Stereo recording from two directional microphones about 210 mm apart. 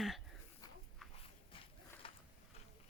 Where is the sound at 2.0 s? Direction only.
25° left (ahead or behind).